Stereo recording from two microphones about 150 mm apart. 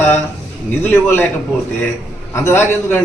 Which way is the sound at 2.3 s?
15° left (ahead or behind).